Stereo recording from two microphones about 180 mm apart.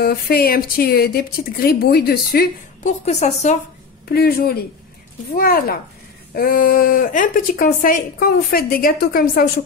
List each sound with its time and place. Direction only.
0.0 s a woman's voice: 55° left (ahead or behind)
2.8 s a woman's voice: 35° left (ahead or behind)
4.1 s a woman's voice: 60° left (ahead or behind)